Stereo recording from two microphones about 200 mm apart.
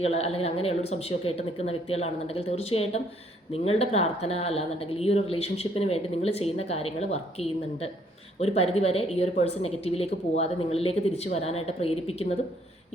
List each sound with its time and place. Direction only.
0.0 s a woman's voice: 30° left (ahead or behind)